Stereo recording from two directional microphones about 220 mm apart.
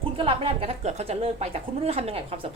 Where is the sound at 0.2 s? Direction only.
25° right (ahead or behind).